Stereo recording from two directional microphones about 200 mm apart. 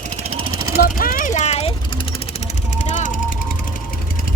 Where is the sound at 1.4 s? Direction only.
35° left (ahead or behind).